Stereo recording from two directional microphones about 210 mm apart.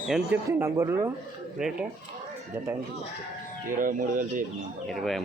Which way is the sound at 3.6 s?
40° right (ahead or behind).